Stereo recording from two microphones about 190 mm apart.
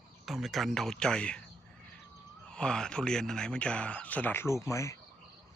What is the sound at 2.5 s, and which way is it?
A man's voice, 5° left (ahead or behind).